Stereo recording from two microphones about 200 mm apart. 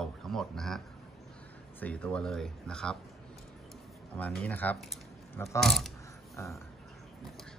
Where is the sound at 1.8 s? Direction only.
5° left (ahead or behind).